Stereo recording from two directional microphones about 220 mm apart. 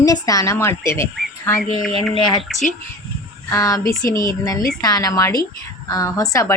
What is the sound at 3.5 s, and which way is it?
A woman's voice, 15° left (ahead or behind).